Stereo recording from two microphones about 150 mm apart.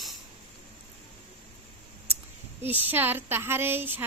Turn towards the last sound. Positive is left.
turn(degrees=-15)  # may be behind; listen again after turning